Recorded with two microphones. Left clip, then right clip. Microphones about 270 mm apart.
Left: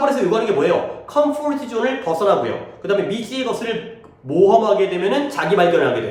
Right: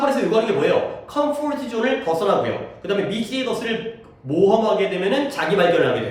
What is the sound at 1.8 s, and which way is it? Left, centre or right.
A man's voice, centre.